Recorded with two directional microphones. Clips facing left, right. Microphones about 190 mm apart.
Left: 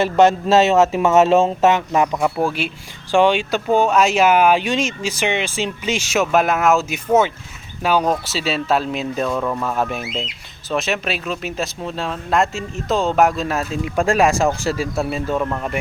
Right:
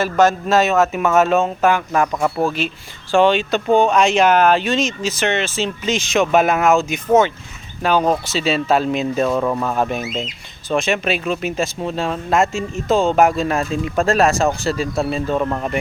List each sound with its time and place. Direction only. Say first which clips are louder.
0.0 s speech: left 2 dB; 25° left (ahead or behind)
2.4 s speech: right 1 dB; 10° left (ahead or behind); by 9.6 s 10° right (ahead or behind)
9.6 s speech: right 2 dB; centre (ahead or behind)